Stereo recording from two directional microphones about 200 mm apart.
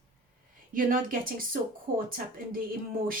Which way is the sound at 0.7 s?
45° right (ahead or behind).